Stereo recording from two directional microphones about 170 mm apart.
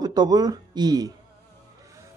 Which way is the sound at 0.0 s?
25° right (ahead or behind).